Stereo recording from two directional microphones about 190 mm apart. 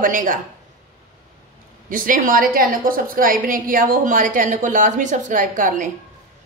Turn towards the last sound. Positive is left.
turn(degrees=-45)  # may be behind; listen again after turning